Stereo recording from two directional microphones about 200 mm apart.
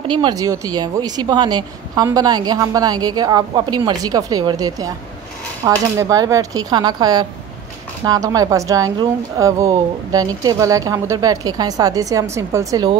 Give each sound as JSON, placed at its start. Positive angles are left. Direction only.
{"t": 0.1, "sound": "speech", "side_deg": -20}